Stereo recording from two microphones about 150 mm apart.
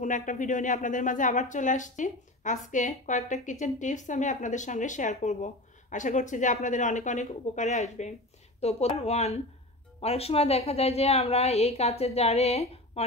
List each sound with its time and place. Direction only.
0.0 s a woman's voice: 60° left (ahead or behind)